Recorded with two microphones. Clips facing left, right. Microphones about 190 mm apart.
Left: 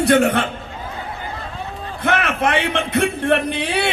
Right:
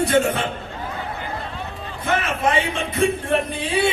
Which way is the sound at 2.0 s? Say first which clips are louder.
Left 2 dB; 70° left (ahead or behind).